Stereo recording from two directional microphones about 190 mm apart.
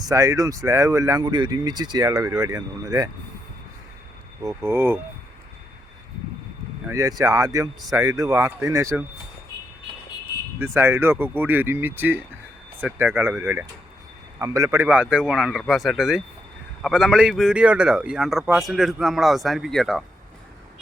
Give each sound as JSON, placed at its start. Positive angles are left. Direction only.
{"t": 0.0, "sound": "speech", "side_deg": -15}
{"t": 4.4, "sound": "speech", "side_deg": -15}
{"t": 6.8, "sound": "speech", "side_deg": -15}
{"t": 10.6, "sound": "speech", "side_deg": -15}